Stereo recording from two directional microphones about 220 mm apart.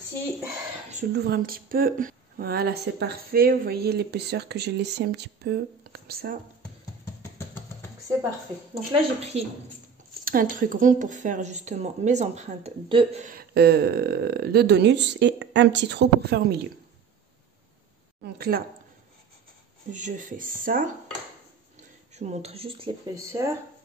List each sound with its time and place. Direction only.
1.1 s speech: 45° right (ahead or behind)
8.9 s speech: 25° right (ahead or behind)
10.2 s speech: 40° right (ahead or behind)
18.2 s speech: 45° right (ahead or behind)
19.9 s speech: 35° right (ahead or behind)
22.1 s speech: 30° right (ahead or behind); by 23.6 s 15° right (ahead or behind)